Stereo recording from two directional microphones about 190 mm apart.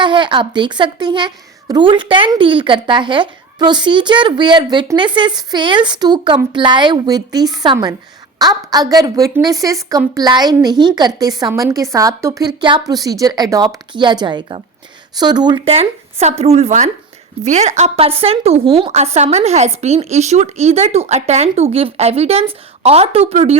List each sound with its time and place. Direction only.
0.0 s a woman's voice: 25° right (ahead or behind)